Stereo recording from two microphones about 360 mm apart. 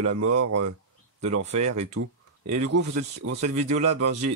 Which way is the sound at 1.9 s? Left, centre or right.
Right.